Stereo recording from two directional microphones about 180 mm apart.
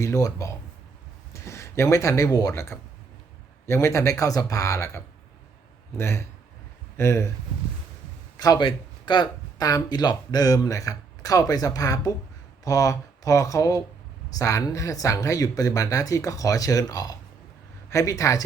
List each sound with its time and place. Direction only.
0.0 s a man's voice: 15° left (ahead or behind)
8.4 s a man's voice: 25° left (ahead or behind)